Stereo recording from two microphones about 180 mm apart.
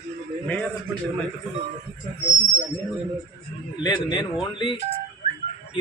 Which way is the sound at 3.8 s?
25° left (ahead or behind).